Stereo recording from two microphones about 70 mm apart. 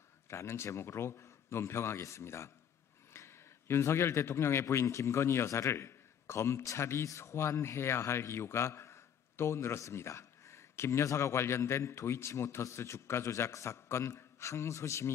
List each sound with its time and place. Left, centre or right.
0.3 s speech: left